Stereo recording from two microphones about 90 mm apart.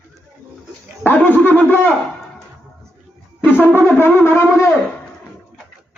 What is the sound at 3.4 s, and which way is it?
Brass instrument, 25° left (ahead or behind).